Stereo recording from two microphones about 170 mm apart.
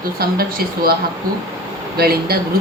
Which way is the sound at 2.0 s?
65° right (ahead or behind).